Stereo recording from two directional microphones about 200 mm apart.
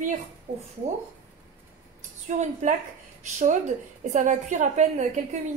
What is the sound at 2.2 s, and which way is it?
Speech, 40° right (ahead or behind).